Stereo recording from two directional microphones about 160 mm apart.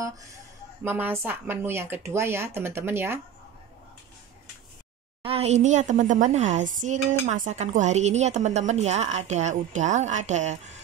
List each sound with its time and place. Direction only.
0.8 s speech: 15° right (ahead or behind)
5.2 s a woman's voice: 40° right (ahead or behind)